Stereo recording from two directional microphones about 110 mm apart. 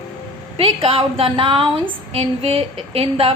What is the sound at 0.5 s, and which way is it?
A woman's voice, 60° right (ahead or behind).